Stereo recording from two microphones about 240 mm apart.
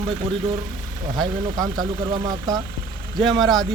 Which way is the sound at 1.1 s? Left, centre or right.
Centre.